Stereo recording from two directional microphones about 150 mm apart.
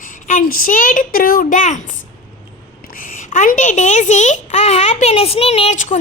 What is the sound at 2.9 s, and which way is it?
A child's voice, 65° left (ahead or behind).